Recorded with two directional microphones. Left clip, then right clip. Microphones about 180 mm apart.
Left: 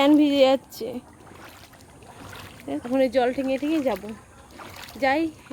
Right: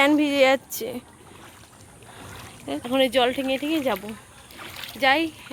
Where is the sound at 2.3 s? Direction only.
5° left (ahead or behind).